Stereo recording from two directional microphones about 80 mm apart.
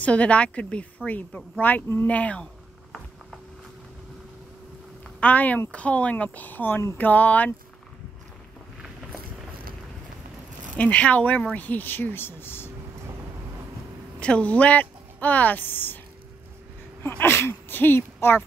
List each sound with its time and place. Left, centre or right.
0.0 s a woman's voice: centre
5.2 s speech: centre
10.8 s speech: centre
14.2 s speech: centre
17.1 s speech: left